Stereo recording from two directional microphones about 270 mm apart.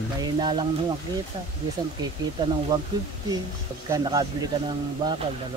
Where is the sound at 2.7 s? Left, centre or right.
Centre.